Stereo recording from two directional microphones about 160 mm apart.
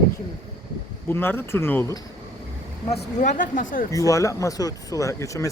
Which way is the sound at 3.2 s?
50° left (ahead or behind).